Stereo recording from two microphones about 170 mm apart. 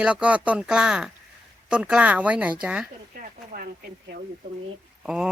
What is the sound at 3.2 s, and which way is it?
Speech, 55° right (ahead or behind).